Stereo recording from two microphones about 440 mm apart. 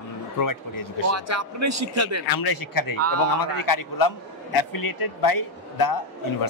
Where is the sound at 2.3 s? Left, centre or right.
Left.